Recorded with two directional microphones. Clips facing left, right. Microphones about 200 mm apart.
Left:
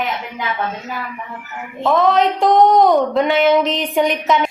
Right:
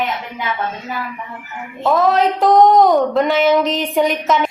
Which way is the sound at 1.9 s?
Centre (ahead or behind).